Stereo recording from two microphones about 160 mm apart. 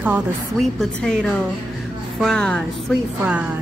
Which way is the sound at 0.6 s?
Centre (ahead or behind).